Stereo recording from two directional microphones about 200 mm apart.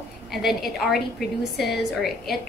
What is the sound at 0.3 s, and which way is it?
A woman's voice, centre (ahead or behind).